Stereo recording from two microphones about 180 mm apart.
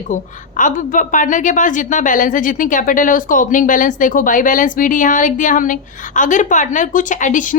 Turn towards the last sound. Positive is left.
turn(degrees=45)  # may be behind; listen again after turning